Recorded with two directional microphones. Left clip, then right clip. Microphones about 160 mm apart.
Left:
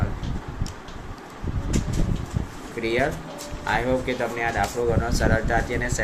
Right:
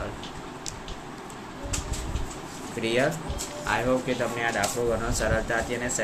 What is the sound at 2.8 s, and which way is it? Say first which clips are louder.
Speech: left 1 dB; centre (ahead or behind).